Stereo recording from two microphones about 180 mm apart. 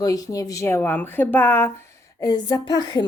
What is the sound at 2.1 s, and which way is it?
Speech, 20° left (ahead or behind).